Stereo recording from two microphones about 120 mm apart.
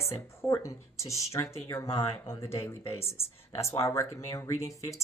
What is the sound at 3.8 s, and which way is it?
Speech, 25° left (ahead or behind).